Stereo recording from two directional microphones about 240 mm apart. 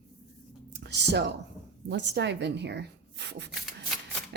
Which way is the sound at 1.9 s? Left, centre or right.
Right.